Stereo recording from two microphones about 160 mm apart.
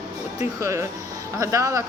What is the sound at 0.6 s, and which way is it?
A woman's voice, 20° right (ahead or behind).